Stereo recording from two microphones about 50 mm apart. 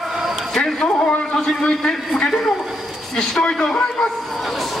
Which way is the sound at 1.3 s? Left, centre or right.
Centre.